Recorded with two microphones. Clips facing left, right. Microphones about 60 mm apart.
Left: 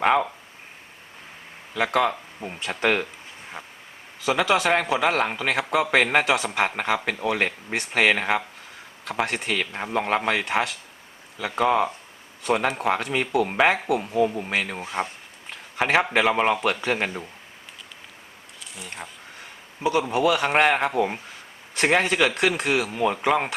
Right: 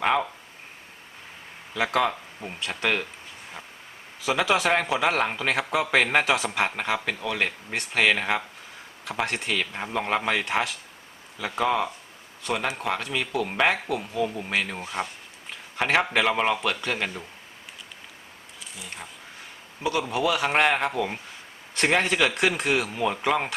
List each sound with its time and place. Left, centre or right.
0.0 s speech: centre
1.7 s speech: centre
3.6 s vehicle: left
4.2 s a man's voice: centre
14.5 s a man's voice: centre
14.8 s speech: centre
15.4 s a sound: centre
16.1 s a man's voice: centre
16.6 s speech: centre
18.6 s a sound: centre
20.0 s a man's voice: centre